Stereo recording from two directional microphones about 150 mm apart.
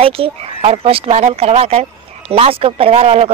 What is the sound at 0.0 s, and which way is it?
A woman's voice, 40° right (ahead or behind).